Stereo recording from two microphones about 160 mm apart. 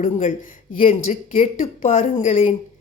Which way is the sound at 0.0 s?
50° left (ahead or behind).